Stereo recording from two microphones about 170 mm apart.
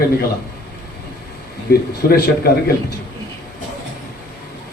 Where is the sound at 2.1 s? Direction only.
65° left (ahead or behind).